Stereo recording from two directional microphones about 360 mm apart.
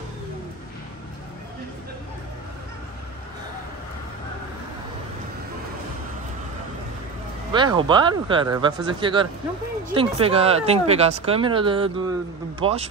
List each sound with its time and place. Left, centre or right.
7.5 s speech: centre